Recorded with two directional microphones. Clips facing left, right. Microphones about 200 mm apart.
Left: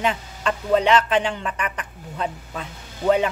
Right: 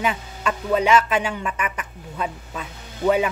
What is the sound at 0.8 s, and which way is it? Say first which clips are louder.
A woman's voice: even; 10° right (ahead or behind).